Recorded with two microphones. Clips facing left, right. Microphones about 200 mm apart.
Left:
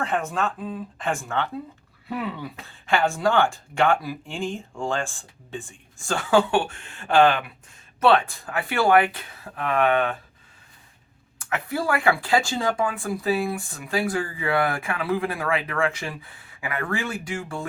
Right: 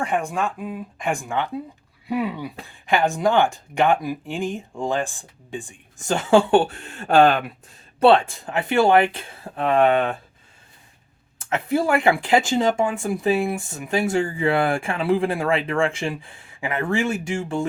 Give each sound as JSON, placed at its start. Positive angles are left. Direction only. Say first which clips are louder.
{"t": 0.0, "sound": "speech", "louder": "right 2 dB", "side_deg": -15}
{"t": 7.9, "sound": "speech", "louder": "right 4 dB", "side_deg": -30}
{"t": 11.3, "sound": "speech", "louder": "right 6 dB", "side_deg": -25}